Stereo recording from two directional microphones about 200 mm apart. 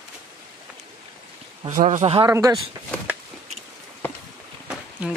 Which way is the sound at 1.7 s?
35° right (ahead or behind).